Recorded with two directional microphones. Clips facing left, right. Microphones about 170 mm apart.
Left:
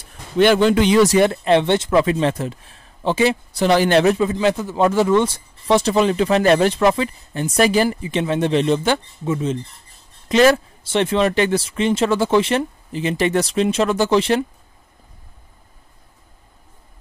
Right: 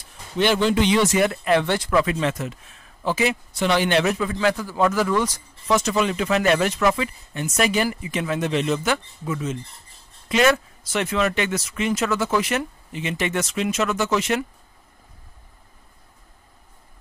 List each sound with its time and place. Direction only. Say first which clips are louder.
0.4 s speech: left 5 dB; 55° left (ahead or behind); by 14.4 s 30° left (ahead or behind)